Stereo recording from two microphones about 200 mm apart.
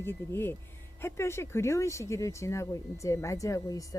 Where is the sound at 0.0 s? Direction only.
10° left (ahead or behind).